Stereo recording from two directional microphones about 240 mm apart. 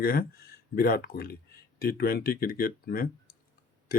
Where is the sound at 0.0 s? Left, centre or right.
Left.